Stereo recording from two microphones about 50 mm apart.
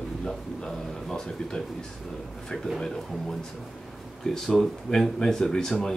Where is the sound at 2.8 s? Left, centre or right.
Centre.